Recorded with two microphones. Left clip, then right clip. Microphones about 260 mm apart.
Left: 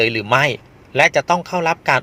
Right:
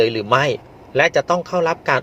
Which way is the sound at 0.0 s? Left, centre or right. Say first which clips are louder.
Even; left.